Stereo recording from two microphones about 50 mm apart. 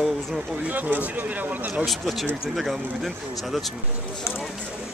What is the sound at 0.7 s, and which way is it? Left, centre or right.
Speech, right.